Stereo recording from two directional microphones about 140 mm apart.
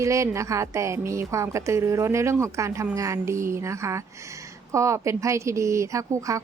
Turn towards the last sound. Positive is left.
turn(degrees=-20)  # may be behind; listen again after turning